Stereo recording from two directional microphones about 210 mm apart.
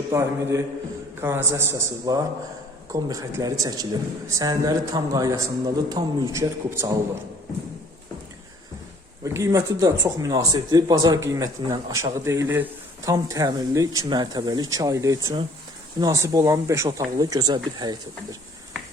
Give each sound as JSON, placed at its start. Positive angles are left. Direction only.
{"t": 0.1, "sound": "speech", "side_deg": -15}
{"t": 9.2, "sound": "speech", "side_deg": -15}